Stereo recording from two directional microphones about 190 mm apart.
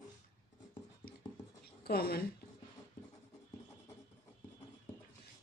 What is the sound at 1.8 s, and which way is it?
Speech, 55° left (ahead or behind).